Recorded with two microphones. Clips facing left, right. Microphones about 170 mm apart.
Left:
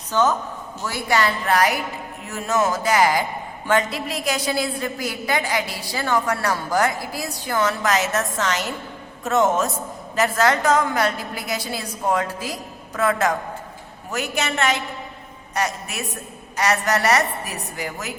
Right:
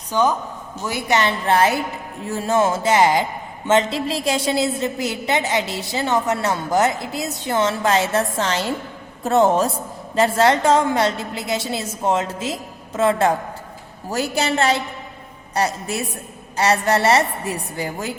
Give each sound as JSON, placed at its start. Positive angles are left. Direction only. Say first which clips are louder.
{"t": 0.1, "sound": "a woman's voice", "louder": "right 1 dB", "side_deg": -15}